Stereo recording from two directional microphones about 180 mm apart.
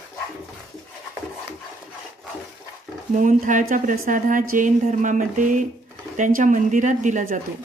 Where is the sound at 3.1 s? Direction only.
45° right (ahead or behind).